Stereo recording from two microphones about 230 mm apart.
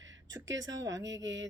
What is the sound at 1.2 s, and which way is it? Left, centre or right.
Speech, right.